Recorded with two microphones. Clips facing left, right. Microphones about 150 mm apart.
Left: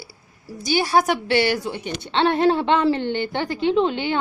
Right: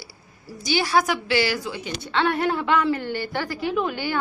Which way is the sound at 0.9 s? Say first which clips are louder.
Left 3 dB; 25° left (ahead or behind).